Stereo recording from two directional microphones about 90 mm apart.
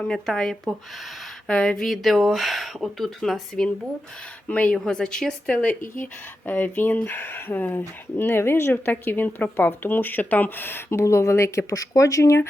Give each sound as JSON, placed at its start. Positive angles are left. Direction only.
{"t": 0.0, "sound": "speech", "side_deg": 5}
{"t": 4.4, "sound": "speech", "side_deg": 15}
{"t": 5.6, "sound": "speech", "side_deg": 20}